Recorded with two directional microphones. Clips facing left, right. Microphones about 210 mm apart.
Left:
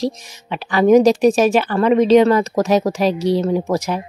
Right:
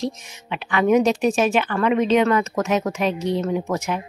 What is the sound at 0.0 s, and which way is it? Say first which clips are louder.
Speech: left 5 dB; 35° left (ahead or behind).